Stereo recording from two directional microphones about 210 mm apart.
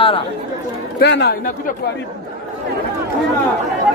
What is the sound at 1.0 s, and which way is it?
Speech, 50° left (ahead or behind).